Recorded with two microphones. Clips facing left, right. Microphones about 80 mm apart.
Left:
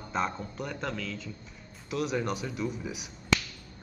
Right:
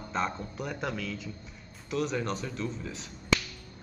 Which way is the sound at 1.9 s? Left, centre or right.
Centre.